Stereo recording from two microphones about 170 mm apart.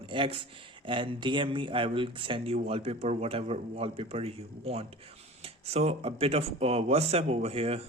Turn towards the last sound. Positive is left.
turn(degrees=-35)  # may be behind; listen again after turning